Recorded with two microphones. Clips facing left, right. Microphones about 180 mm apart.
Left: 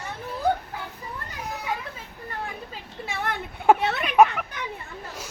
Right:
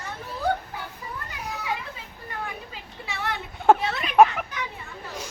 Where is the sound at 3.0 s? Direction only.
50° left (ahead or behind).